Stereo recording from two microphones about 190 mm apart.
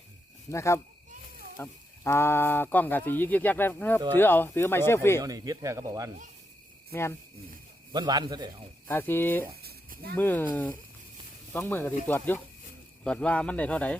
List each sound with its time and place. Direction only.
0.5 s speech: 15° left (ahead or behind)
5.2 s speech: 20° right (ahead or behind)
7.9 s speech: 25° right (ahead or behind)
8.9 s speech: 10° left (ahead or behind)
9.6 s a sound: 55° right (ahead or behind)
10.2 s speech: 10° left (ahead or behind)
11.5 s speech: 10° left (ahead or behind)